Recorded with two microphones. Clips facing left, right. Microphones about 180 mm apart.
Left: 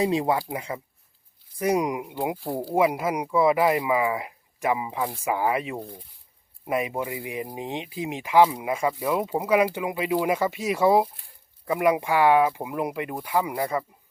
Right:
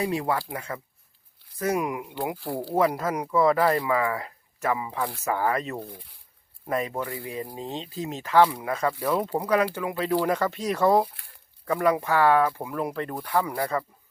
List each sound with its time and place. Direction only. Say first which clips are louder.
0.0 s speech: left 3 dB; 20° left (ahead or behind)
2.7 s speech: left 1 dB; 10° left (ahead or behind)